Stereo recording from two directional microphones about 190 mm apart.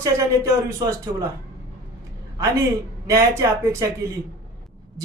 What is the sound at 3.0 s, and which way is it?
Speech, 15° right (ahead or behind).